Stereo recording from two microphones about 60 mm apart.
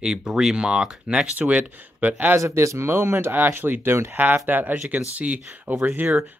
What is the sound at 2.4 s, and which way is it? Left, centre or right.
Speech, right.